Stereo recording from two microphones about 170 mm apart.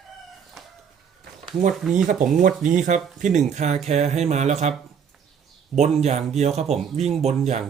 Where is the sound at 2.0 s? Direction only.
50° right (ahead or behind).